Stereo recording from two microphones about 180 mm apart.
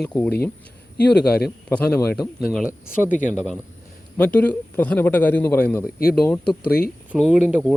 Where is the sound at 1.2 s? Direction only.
60° left (ahead or behind).